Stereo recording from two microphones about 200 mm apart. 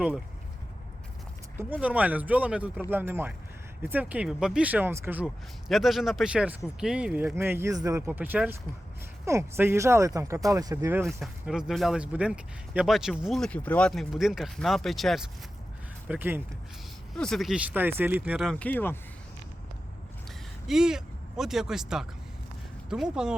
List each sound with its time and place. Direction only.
1.5 s speech: 5° right (ahead or behind)
11.2 s speech: centre (ahead or behind)
17.2 s speech: centre (ahead or behind)
18.3 s speech: 5° left (ahead or behind)
20.7 s speech: 5° right (ahead or behind)